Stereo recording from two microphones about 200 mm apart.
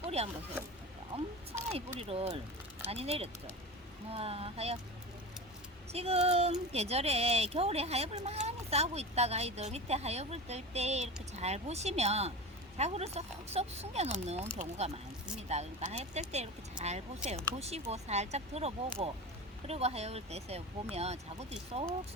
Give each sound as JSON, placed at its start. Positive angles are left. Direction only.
{"t": 0.2, "sound": "speech", "side_deg": -30}
{"t": 2.0, "sound": "speech", "side_deg": -30}
{"t": 5.9, "sound": "speech", "side_deg": -30}